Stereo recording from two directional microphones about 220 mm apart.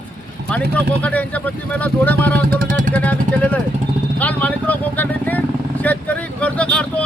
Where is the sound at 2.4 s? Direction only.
40° right (ahead or behind).